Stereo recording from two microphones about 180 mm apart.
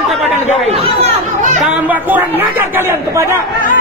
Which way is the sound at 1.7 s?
10° right (ahead or behind).